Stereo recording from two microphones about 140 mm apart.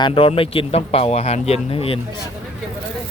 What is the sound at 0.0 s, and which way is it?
Speech, 40° left (ahead or behind).